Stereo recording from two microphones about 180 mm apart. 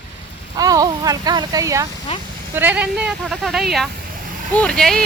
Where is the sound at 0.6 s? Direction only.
20° right (ahead or behind).